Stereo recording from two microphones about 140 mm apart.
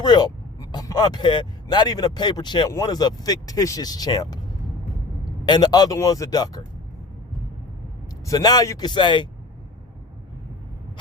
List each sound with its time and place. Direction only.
0.0 s vehicle: 30° left (ahead or behind)
1.6 s speech: 30° left (ahead or behind)
5.5 s speech: 30° left (ahead or behind)
8.3 s speech: 30° left (ahead or behind)